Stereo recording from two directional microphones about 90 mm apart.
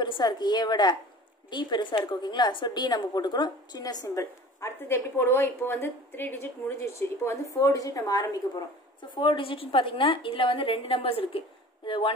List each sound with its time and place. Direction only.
0.0 s a woman's voice: 55° left (ahead or behind)
9.1 s a woman's voice: 65° left (ahead or behind)